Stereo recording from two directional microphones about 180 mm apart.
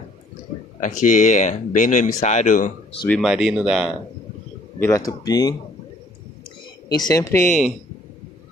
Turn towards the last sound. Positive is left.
turn(degrees=15)  # may be behind; listen again after turning